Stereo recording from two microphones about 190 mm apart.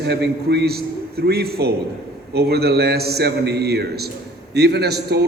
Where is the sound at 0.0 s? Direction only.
60° right (ahead or behind).